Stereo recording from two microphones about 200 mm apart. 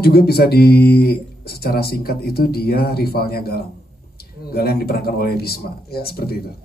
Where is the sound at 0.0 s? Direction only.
50° left (ahead or behind).